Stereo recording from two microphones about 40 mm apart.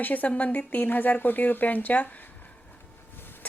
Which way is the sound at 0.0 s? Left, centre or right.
Left.